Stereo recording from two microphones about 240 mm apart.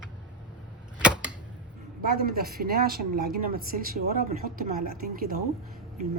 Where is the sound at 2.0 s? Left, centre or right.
Right.